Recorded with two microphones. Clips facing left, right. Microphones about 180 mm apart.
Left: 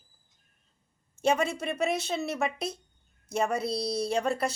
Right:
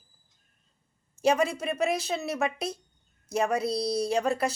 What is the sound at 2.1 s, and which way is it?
Speech, centre (ahead or behind).